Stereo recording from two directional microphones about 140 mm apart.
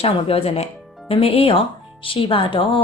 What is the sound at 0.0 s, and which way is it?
A woman's voice, 45° left (ahead or behind).